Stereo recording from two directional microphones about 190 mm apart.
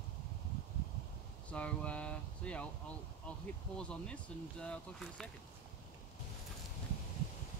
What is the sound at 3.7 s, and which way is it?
Speech, 5° left (ahead or behind).